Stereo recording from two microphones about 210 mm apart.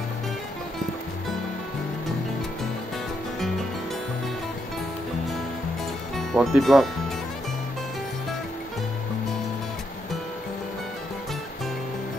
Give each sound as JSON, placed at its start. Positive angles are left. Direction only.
{"t": 6.1, "sound": "speech", "side_deg": 0}